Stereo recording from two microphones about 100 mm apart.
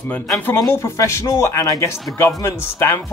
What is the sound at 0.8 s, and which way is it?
Speech, 30° left (ahead or behind).